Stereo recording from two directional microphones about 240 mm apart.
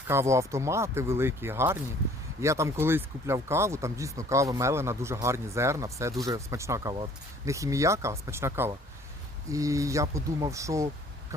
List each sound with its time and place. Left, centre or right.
0.1 s speech: centre